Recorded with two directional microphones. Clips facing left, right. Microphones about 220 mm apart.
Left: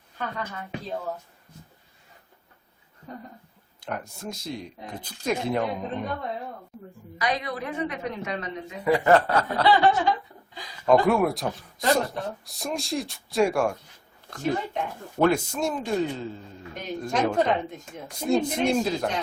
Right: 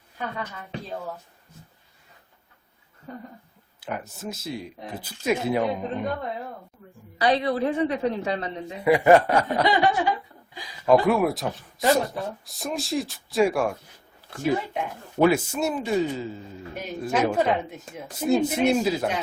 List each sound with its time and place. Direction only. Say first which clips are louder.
3.8 s speech: right 1 dB; 5° right (ahead or behind)
7.2 s a woman's voice: right 7 dB; 30° right (ahead or behind)
8.8 s a man's voice: right 3 dB; 10° right (ahead or behind)
10.5 s a man's voice: right 1 dB; 5° right (ahead or behind)